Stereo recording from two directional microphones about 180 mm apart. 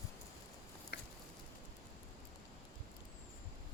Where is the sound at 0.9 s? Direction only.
60° left (ahead or behind).